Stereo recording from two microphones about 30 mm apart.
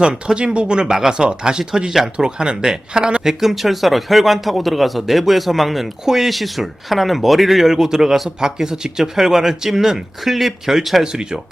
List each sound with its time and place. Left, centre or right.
0.3 s speech: right
0.9 s speech: centre
1.2 s speech: right
3.2 s speech: centre
7.7 s speech: centre
11.0 s speech: right